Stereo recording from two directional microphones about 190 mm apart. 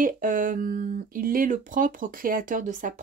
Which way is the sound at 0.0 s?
45° right (ahead or behind).